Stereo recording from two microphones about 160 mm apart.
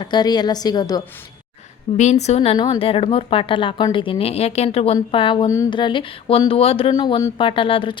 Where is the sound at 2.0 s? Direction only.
45° left (ahead or behind).